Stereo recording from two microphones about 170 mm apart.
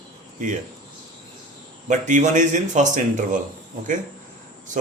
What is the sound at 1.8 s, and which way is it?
Speech, 45° right (ahead or behind).